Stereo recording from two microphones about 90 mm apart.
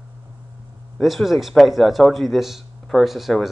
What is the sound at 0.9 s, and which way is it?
Speech, centre (ahead or behind).